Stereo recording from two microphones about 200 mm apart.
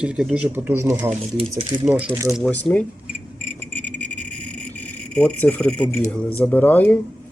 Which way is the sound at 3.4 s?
10° left (ahead or behind).